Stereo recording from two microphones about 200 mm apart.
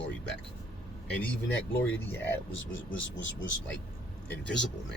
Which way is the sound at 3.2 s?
65° left (ahead or behind).